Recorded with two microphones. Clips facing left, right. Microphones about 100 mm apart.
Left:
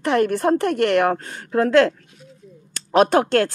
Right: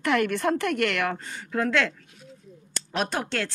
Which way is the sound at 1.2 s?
50° left (ahead or behind).